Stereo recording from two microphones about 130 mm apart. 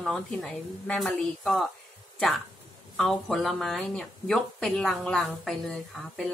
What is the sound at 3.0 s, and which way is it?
Speech, centre (ahead or behind).